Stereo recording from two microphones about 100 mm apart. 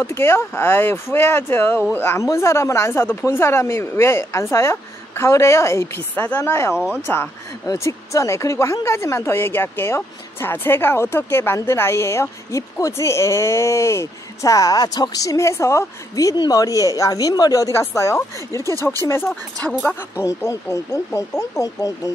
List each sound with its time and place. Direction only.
0.0 s speech: 25° left (ahead or behind)
6.7 s speech: 10° right (ahead or behind)
7.6 s speech: 30° left (ahead or behind)